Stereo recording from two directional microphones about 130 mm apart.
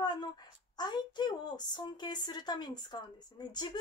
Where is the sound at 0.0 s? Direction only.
35° left (ahead or behind).